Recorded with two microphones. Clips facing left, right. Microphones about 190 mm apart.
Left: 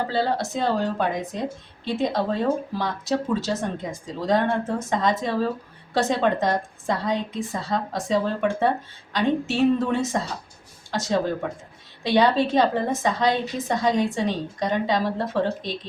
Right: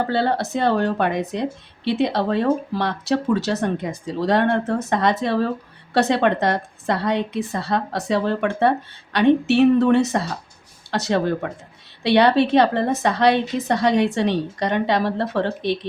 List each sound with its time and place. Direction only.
0.1 s a woman's voice: 65° right (ahead or behind)